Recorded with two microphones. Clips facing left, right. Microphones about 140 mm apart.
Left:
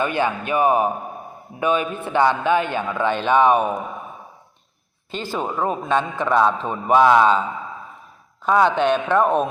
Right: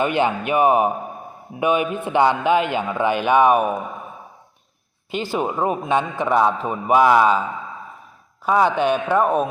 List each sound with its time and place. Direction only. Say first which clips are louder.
0.0 s a man's voice: right 2 dB; 20° right (ahead or behind)
5.1 s a man's voice: right 2 dB; 15° right (ahead or behind)
8.4 s a man's voice: even; 10° right (ahead or behind)